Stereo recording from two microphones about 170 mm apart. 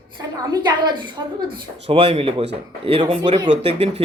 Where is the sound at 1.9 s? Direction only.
35° right (ahead or behind).